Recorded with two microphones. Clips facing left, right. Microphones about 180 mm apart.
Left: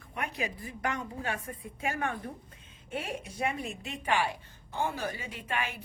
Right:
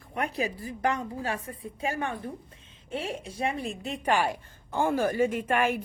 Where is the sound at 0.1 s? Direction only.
35° right (ahead or behind).